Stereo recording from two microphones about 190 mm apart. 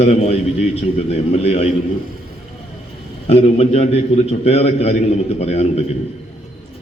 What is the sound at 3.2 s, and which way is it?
A man's voice, 35° left (ahead or behind).